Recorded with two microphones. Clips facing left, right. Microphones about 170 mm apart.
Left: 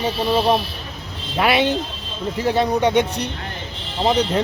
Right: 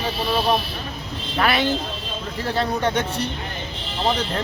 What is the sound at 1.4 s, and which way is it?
Speech, 20° left (ahead or behind).